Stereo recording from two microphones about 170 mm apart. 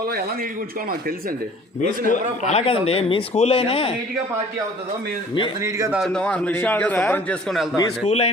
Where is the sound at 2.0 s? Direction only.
40° left (ahead or behind).